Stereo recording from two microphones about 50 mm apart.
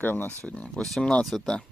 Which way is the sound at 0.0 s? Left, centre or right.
Left.